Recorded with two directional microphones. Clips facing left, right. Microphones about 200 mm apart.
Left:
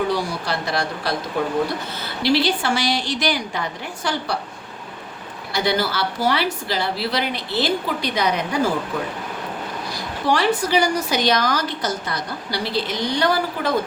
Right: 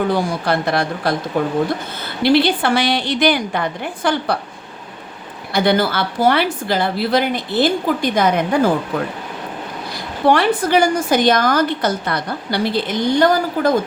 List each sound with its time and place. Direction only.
0.1 s a woman's voice: 55° right (ahead or behind)
5.5 s a woman's voice: 55° right (ahead or behind)
10.2 s a woman's voice: 55° right (ahead or behind)